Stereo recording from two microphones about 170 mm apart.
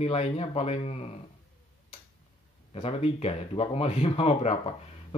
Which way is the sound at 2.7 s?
35° left (ahead or behind).